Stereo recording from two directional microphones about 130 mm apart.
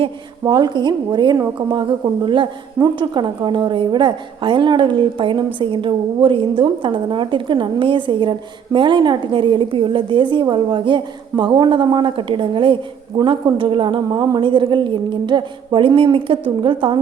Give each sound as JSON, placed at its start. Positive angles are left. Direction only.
{"t": 0.4, "sound": "a woman's voice", "side_deg": -35}